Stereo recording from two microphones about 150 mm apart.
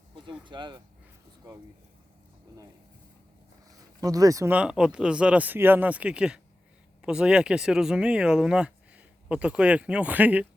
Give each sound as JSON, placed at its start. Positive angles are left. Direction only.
{"t": 0.4, "sound": "speech", "side_deg": -30}
{"t": 4.0, "sound": "speech", "side_deg": -25}
{"t": 4.5, "sound": "speech", "side_deg": -5}